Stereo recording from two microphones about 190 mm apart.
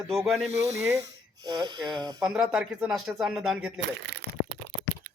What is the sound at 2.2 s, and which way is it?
Speech, centre (ahead or behind).